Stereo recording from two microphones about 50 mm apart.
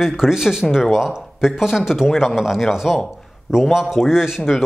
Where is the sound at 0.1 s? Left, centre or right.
Centre.